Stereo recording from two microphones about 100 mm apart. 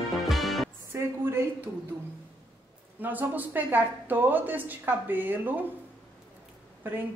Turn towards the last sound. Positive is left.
turn(degrees=-20)  # may be behind; listen again after turning